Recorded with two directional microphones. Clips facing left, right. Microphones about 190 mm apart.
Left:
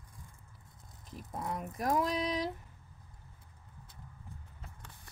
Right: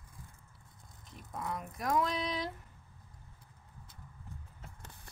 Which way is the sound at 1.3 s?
20° left (ahead or behind).